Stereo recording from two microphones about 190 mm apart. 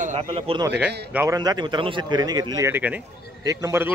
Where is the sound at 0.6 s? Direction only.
5° right (ahead or behind).